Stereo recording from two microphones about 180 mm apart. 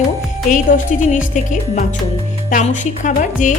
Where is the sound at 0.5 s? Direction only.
45° left (ahead or behind).